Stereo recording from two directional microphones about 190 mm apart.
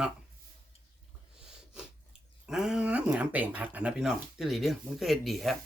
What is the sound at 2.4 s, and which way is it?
Speech, 5° right (ahead or behind).